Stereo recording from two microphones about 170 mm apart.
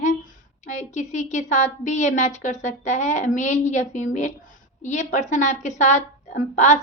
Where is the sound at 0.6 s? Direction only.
45° left (ahead or behind).